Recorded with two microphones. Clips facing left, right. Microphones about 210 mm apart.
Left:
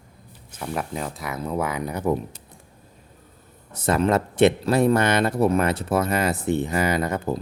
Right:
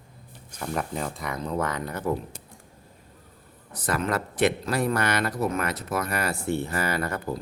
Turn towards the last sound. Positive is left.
turn(degrees=20)  # may be behind; listen again after turning